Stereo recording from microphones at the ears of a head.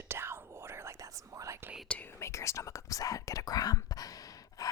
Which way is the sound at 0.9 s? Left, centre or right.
Right.